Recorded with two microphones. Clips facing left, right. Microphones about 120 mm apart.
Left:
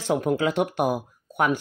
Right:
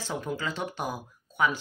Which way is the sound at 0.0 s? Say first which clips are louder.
Left 10 dB; 65° left (ahead or behind).